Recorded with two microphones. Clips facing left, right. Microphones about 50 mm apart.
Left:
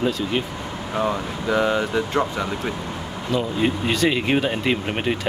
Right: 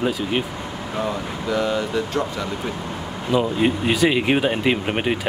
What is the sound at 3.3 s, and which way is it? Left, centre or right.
Speech, centre.